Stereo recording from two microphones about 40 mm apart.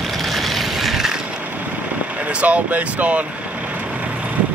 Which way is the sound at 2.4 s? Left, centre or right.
Right.